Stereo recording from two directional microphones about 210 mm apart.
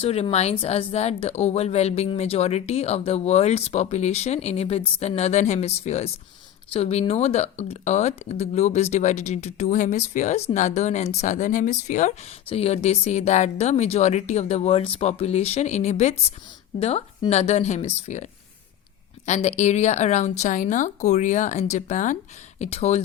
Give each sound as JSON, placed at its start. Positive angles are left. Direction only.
{"t": 0.0, "sound": "speech", "side_deg": 30}